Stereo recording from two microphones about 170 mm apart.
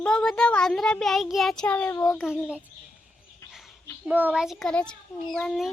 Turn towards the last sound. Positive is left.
turn(degrees=0)  # may be behind; listen again after turning